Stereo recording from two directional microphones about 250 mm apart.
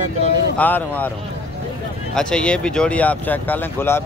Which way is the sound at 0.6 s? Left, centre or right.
Centre.